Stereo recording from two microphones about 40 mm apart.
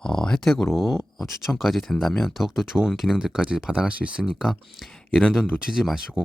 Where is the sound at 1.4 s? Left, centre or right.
Centre.